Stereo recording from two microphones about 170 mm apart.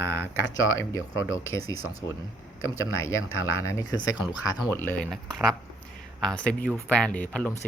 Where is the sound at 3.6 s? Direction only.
20° left (ahead or behind).